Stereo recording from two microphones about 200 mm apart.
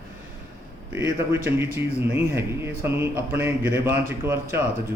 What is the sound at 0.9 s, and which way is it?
A man's voice, 10° right (ahead or behind).